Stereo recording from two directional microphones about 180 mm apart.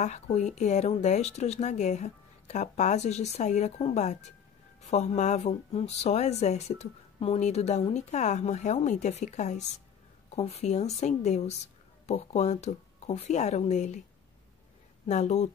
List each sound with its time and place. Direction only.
0.0 s speech: 40° left (ahead or behind)
15.0 s speech: 40° left (ahead or behind)